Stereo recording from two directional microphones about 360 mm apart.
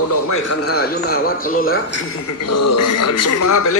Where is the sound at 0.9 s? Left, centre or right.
Left.